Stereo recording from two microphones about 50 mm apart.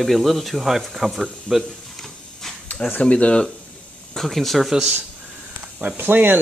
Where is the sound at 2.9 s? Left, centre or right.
Left.